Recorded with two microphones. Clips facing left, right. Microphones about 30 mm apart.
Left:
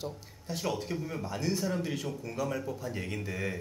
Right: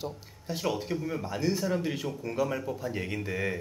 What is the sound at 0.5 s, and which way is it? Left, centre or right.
Speech, centre.